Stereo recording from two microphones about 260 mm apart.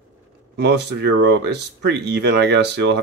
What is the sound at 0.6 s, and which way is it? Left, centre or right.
Speech, right.